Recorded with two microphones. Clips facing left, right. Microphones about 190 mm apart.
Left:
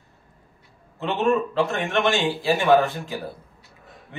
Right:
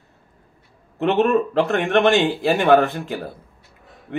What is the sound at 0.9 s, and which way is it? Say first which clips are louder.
A man's voice: right 5 dB; 65° right (ahead or behind).